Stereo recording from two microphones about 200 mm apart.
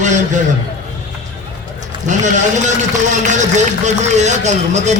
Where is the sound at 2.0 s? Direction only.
35° right (ahead or behind).